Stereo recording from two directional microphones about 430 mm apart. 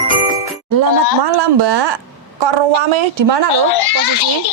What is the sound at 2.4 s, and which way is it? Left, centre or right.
A woman's voice, right.